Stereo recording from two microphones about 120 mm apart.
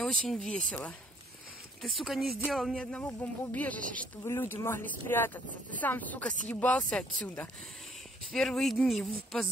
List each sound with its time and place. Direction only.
0.0 s speech: 5° left (ahead or behind)
1.8 s speech: centre (ahead or behind)